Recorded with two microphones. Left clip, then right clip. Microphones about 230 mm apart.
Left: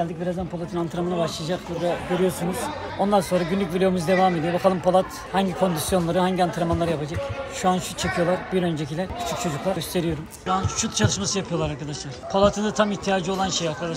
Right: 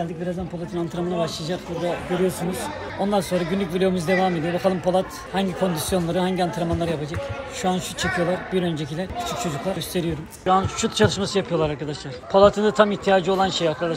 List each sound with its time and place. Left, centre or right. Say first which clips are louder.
0.0 s a man's voice: left 1 dB; centre